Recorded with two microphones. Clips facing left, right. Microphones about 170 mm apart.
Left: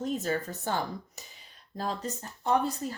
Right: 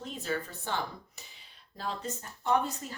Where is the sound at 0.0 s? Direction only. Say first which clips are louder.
Left 5 dB; 45° left (ahead or behind).